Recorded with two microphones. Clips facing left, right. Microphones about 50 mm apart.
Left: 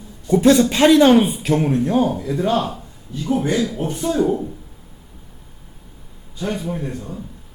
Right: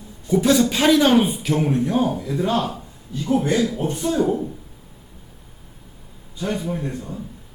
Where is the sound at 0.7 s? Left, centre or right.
Left.